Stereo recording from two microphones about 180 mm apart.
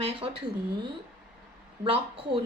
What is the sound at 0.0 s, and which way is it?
Speech, 30° right (ahead or behind).